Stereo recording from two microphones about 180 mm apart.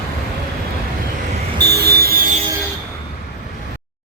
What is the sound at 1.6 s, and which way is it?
Vehicle, 65° right (ahead or behind).